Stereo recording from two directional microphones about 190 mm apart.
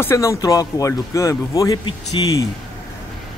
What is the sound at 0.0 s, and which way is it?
Speech, 15° left (ahead or behind).